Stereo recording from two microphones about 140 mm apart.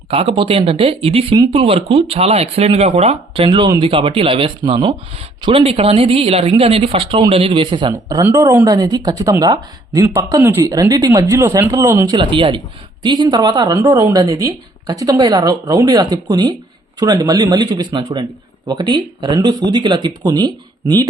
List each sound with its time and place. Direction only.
0.1 s speech: 40° right (ahead or behind)
8.2 s speech: 20° right (ahead or behind)
12.1 s speech: 35° right (ahead or behind)